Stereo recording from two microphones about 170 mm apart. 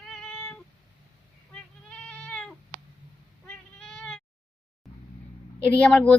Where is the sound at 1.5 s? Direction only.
5° left (ahead or behind).